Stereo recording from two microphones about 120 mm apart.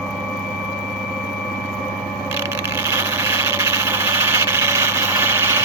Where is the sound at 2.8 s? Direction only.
20° right (ahead or behind).